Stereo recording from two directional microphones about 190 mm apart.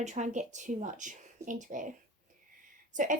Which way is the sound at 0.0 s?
40° right (ahead or behind).